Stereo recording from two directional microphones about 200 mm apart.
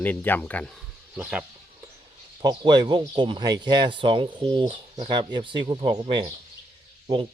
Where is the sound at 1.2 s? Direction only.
5° right (ahead or behind).